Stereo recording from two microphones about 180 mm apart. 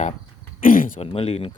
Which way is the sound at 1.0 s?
35° left (ahead or behind).